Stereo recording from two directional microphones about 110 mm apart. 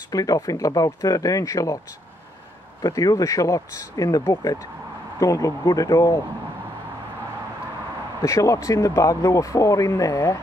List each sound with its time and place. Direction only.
0.1 s speech: 30° left (ahead or behind)
2.8 s speech: 35° left (ahead or behind)
8.2 s speech: 25° left (ahead or behind)